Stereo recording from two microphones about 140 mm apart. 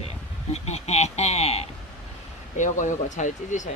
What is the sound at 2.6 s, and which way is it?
Speech, 60° left (ahead or behind).